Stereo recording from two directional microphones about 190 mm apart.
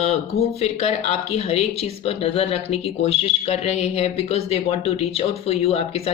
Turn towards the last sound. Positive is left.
turn(degrees=30)  # may be behind; listen again after turning